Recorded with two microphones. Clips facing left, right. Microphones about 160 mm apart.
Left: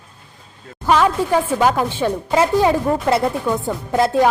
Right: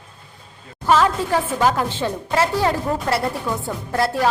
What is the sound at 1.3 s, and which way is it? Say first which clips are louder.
A woman's voice: left 3 dB; 10° left (ahead or behind).